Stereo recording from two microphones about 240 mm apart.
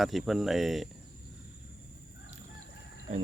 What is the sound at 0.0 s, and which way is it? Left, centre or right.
Speech, centre.